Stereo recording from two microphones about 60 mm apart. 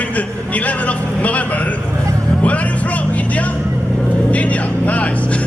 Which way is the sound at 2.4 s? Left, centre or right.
Left.